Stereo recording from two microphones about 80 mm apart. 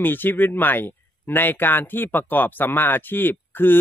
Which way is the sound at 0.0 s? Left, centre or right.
Left.